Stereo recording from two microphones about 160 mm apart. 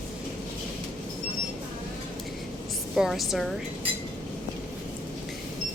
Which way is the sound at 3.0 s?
Centre (ahead or behind).